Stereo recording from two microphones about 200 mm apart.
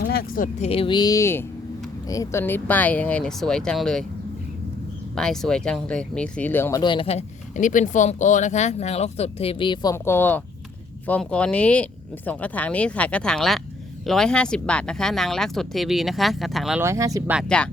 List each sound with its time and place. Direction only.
0.0 s a sound: 50° left (ahead or behind)
0.7 s speech: 25° left (ahead or behind); by 4.0 s 5° left (ahead or behind)
5.1 s speech: 5° left (ahead or behind)
16.8 s speech: 15° right (ahead or behind)